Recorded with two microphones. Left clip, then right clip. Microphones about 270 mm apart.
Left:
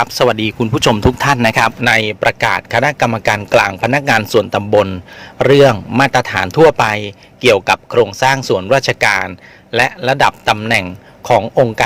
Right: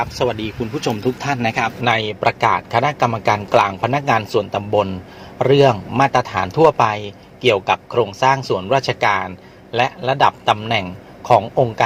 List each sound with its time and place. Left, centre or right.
0.0 s speech: left